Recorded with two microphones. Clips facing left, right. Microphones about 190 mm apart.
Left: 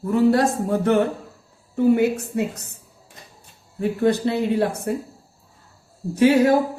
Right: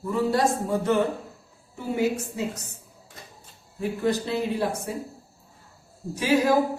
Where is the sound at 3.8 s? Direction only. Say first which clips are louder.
Left 6 dB; 60° left (ahead or behind).